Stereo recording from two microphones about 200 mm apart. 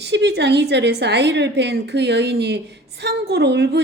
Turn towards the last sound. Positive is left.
turn(degrees=-55)  # may be behind; listen again after turning